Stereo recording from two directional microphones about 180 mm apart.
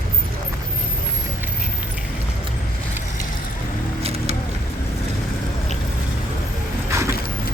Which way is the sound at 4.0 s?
35° right (ahead or behind).